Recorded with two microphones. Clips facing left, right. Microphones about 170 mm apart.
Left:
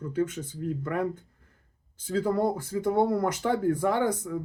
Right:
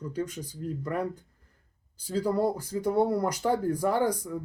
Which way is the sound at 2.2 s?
40° right (ahead or behind).